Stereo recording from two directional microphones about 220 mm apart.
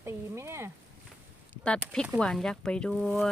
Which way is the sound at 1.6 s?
5° left (ahead or behind).